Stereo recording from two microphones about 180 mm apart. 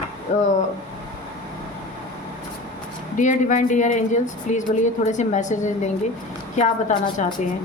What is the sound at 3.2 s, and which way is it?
A woman's voice, 45° left (ahead or behind).